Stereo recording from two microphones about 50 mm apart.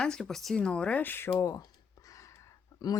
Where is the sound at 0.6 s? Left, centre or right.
Left.